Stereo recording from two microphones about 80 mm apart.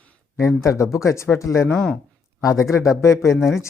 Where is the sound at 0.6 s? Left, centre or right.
Left.